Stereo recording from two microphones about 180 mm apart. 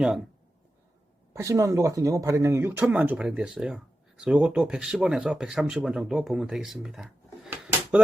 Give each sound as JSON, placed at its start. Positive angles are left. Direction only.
{"t": 1.3, "sound": "speech", "side_deg": -15}